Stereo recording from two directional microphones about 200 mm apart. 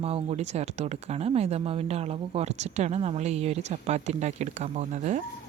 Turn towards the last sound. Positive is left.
turn(degrees=-35)  # may be behind; listen again after turning